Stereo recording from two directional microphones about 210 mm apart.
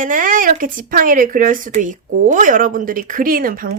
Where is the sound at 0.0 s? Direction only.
40° right (ahead or behind).